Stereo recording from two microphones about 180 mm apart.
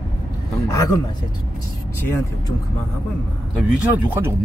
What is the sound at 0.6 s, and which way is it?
Speech, 20° left (ahead or behind).